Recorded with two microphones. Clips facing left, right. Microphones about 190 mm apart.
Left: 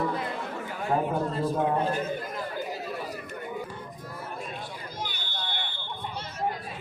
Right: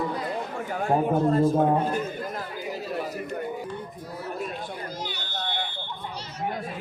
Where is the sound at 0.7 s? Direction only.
45° right (ahead or behind).